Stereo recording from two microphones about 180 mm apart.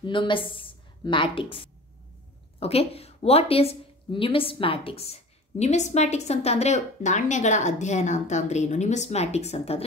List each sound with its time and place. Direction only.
0.0 s a woman's voice: 25° left (ahead or behind)